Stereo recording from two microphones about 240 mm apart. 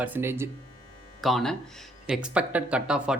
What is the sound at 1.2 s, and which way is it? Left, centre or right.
Speech, centre.